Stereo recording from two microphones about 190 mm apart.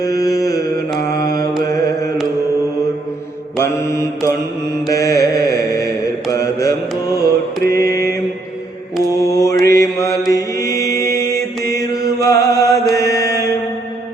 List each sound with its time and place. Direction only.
0.2 s mantra: 20° left (ahead or behind)
1.6 s carnatic music: 20° left (ahead or behind)
3.6 s mantra: 15° left (ahead or behind)
9.3 s mantra: 20° left (ahead or behind)
10.7 s chant: 15° left (ahead or behind)
11.2 s mantra: 15° left (ahead or behind)